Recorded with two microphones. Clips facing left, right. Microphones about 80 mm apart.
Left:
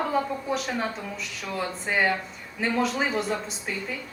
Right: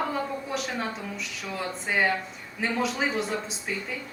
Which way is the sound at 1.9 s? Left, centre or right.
Centre.